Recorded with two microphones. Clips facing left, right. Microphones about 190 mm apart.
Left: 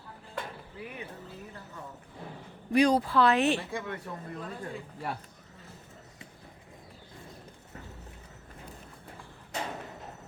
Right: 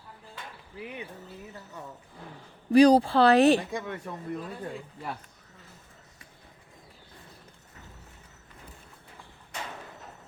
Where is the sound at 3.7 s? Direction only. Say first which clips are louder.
Right 2 dB; 20° right (ahead or behind).